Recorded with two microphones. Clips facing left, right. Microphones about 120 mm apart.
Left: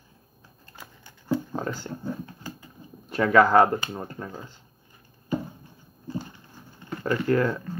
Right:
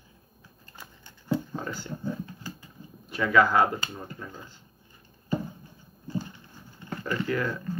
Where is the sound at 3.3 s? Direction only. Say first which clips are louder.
Left 4 dB; 35° left (ahead or behind).